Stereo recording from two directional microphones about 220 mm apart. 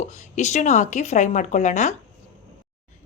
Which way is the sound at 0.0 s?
30° left (ahead or behind).